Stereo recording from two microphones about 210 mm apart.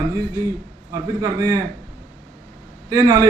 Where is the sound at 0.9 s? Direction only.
15° right (ahead or behind).